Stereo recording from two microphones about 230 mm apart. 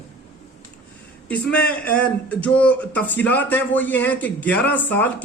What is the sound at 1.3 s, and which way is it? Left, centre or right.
A man's voice, centre.